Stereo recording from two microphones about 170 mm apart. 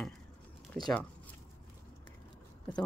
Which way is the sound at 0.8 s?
5° left (ahead or behind).